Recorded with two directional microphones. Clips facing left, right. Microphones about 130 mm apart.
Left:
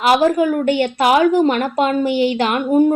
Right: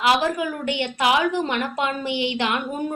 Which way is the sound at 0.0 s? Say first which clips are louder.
Left 7 dB; 40° left (ahead or behind).